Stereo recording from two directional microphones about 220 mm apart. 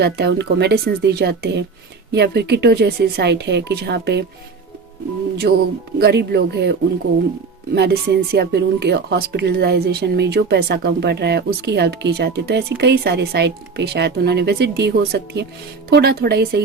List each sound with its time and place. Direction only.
0.0 s a woman's voice: 50° right (ahead or behind)
5.4 s a woman's voice: 45° right (ahead or behind)
7.8 s a woman's voice: 50° right (ahead or behind)